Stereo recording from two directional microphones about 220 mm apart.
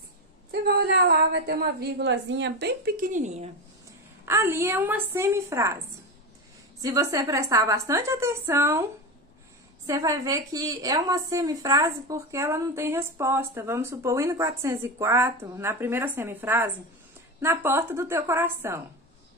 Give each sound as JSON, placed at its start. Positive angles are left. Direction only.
{"t": 0.5, "sound": "a woman's voice", "side_deg": -45}
{"t": 4.3, "sound": "a woman's voice", "side_deg": -10}
{"t": 6.8, "sound": "a woman's voice", "side_deg": -15}
{"t": 9.8, "sound": "a woman's voice", "side_deg": -15}